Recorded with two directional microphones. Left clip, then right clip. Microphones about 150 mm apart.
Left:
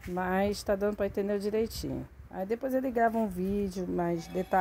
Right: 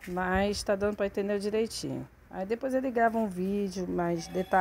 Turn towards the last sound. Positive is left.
turn(degrees=5)  # may be behind; listen again after turning